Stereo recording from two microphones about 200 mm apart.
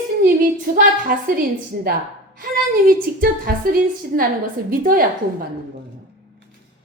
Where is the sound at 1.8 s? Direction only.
45° right (ahead or behind).